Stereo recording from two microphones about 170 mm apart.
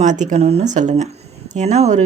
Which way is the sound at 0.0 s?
45° right (ahead or behind).